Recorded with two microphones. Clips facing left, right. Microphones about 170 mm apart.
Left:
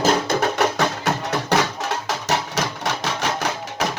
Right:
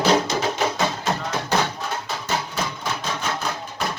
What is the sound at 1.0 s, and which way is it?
Music, 75° left (ahead or behind).